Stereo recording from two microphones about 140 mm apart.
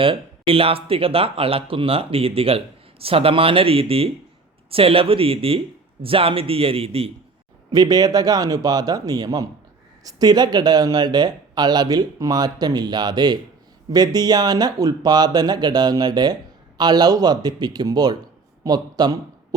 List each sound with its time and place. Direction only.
0.0 s speech: 40° right (ahead or behind)
7.7 s a man's voice: 25° right (ahead or behind)